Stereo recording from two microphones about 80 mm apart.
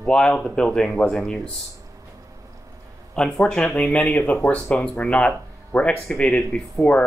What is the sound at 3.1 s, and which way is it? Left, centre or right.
Speech, centre.